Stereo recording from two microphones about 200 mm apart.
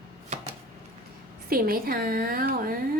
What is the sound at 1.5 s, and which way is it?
A woman's voice, 45° right (ahead or behind).